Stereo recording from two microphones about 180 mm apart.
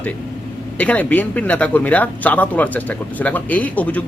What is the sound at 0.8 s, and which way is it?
Speech, 10° left (ahead or behind).